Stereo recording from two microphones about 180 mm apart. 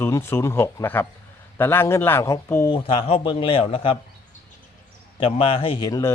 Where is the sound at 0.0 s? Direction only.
10° left (ahead or behind).